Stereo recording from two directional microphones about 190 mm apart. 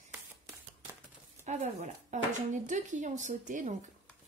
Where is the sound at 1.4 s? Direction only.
35° right (ahead or behind).